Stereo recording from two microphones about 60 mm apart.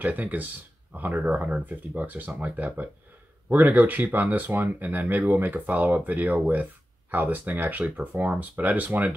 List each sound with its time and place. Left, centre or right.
0.0 s speech: right